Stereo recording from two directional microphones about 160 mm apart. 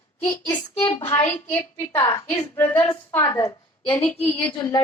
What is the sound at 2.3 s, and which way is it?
A woman's voice, 10° left (ahead or behind).